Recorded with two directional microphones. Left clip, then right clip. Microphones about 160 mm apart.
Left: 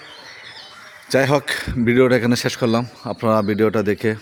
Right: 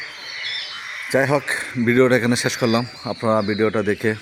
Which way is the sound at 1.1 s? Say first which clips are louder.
Left 2 dB; 15° left (ahead or behind).